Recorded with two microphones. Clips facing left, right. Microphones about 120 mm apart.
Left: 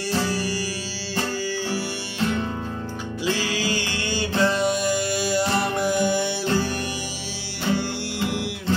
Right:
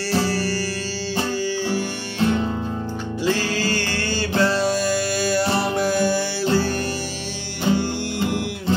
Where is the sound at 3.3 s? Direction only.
10° left (ahead or behind).